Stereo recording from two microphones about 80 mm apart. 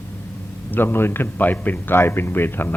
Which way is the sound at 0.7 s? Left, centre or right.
Left.